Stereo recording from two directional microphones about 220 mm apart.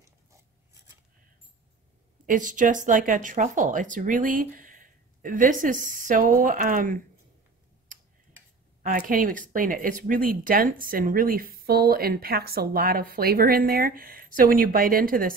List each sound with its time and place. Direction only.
2.2 s speech: 35° right (ahead or behind)
8.8 s speech: 40° right (ahead or behind)